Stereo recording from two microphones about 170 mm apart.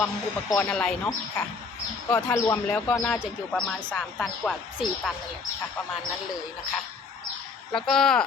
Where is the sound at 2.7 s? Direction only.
5° left (ahead or behind).